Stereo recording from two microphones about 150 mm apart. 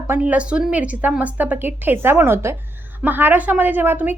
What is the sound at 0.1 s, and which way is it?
A woman's voice, 10° right (ahead or behind).